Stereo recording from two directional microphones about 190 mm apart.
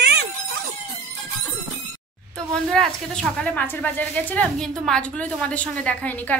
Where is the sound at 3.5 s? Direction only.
10° left (ahead or behind).